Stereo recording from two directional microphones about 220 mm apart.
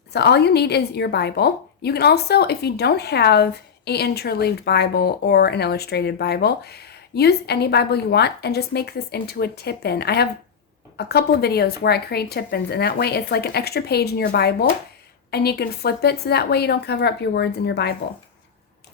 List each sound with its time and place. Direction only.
0.1 s a woman's voice: 50° left (ahead or behind)